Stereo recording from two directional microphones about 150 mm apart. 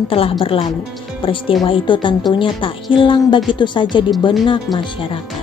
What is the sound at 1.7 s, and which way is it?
A woman's voice, 35° left (ahead or behind).